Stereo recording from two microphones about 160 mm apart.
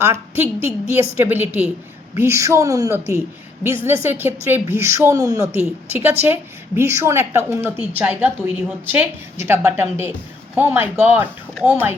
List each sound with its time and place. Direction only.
0.0 s a woman's voice: 15° right (ahead or behind)